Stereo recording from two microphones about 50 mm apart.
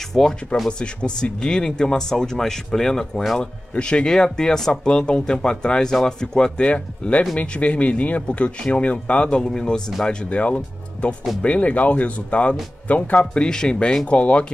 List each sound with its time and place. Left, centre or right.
0.1 s speech: centre
6.7 s speech: left
10.3 s speech: left
13.3 s speech: centre